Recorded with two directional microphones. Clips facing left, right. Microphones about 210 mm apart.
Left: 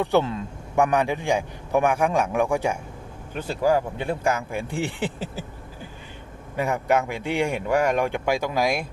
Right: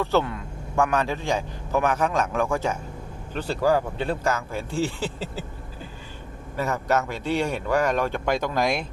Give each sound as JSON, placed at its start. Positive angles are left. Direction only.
{"t": 0.0, "sound": "speech", "side_deg": 20}
{"t": 6.6, "sound": "speech", "side_deg": 15}